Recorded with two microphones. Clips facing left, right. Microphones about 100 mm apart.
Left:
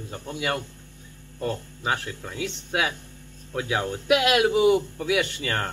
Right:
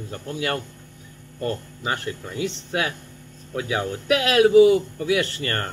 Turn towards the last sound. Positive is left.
turn(degrees=0)  # may be behind; listen again after turning